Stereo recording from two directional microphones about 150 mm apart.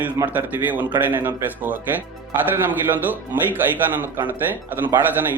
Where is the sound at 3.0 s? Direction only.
10° right (ahead or behind).